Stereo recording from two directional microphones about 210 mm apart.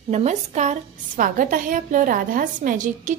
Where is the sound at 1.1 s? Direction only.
40° right (ahead or behind).